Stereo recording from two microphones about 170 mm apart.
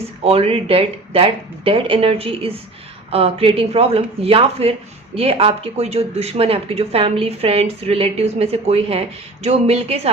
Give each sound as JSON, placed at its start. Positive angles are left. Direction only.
{"t": 0.3, "sound": "speech", "side_deg": -35}